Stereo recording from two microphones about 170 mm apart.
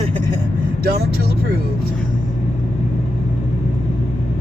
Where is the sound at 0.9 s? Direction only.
65° right (ahead or behind).